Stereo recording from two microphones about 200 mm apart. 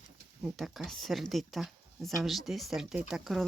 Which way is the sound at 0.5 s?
Centre (ahead or behind).